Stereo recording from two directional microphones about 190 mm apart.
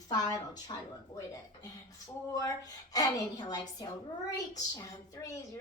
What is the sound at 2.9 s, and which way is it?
A woman's voice, 20° left (ahead or behind).